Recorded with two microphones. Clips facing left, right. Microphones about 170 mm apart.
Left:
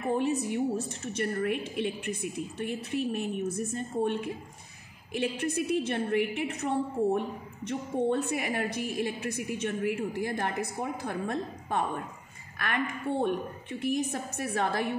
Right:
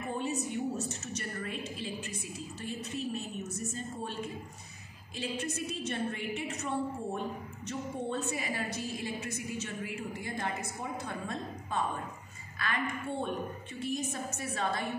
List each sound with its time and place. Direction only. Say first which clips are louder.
0.8 s a woman's voice: left 7 dB; 55° left (ahead or behind)